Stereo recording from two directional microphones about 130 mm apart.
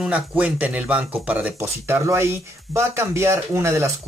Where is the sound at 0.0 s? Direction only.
10° right (ahead or behind).